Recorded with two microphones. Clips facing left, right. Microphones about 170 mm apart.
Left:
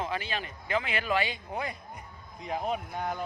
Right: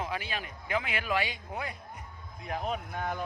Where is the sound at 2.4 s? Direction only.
15° left (ahead or behind).